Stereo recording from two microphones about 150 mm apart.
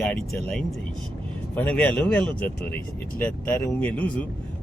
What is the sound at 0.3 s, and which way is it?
Speech, 5° left (ahead or behind).